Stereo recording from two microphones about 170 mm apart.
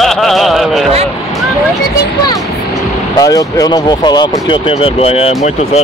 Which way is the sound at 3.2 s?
20° left (ahead or behind).